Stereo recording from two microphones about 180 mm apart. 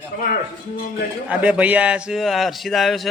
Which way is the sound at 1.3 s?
5° right (ahead or behind).